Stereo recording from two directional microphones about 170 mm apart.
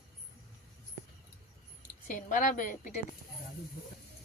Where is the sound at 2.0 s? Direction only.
50° left (ahead or behind).